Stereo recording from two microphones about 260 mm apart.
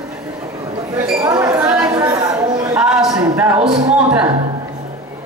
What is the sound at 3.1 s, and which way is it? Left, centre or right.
Speech, centre.